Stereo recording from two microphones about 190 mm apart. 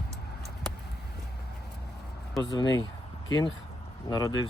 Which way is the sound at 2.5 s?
25° left (ahead or behind).